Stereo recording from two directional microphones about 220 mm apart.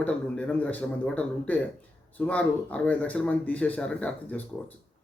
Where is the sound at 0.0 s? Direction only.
5° left (ahead or behind).